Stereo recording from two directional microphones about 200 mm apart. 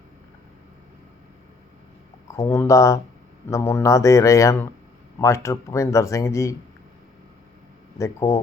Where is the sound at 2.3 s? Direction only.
15° left (ahead or behind).